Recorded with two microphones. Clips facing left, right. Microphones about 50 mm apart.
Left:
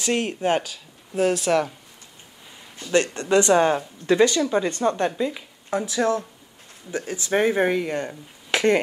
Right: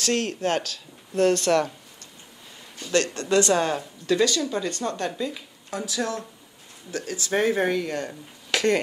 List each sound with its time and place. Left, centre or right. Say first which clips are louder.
0.0 s speech: left 2 dB; centre
3.2 s speech: left 5 dB; left
8.5 s a sound: left 3 dB; centre